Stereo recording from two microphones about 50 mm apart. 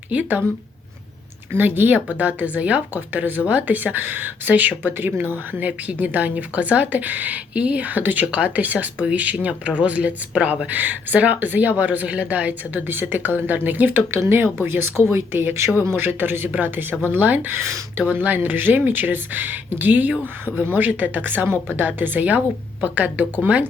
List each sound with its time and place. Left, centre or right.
0.1 s a woman's voice: right
1.5 s speech: right
2.0 s a woman's voice: right
14.6 s a woman's voice: right
17.2 s a woman's voice: right
17.5 s speech: right
18.1 s a woman's voice: right